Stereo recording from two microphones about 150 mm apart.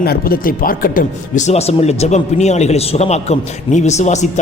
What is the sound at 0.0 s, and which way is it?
Speech, 80° left.